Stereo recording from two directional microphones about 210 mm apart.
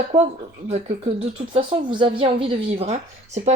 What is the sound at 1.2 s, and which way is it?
Speech, 25° right (ahead or behind).